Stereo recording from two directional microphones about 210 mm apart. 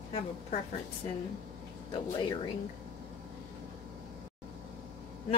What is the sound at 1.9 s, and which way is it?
Speech, 20° left (ahead or behind).